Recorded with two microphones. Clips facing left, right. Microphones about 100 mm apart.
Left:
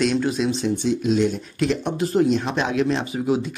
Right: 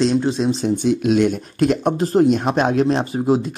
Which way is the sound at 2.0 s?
35° right (ahead or behind).